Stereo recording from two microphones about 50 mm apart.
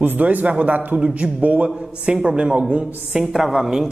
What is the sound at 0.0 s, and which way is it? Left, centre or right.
A man's voice, right.